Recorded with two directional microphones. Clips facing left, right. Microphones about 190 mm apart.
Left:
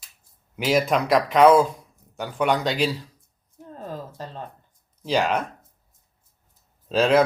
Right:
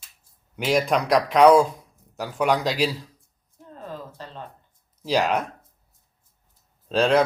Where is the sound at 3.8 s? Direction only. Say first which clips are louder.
Left 2 dB; 40° left (ahead or behind).